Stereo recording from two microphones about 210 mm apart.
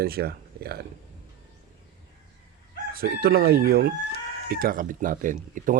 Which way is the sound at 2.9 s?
45° right (ahead or behind).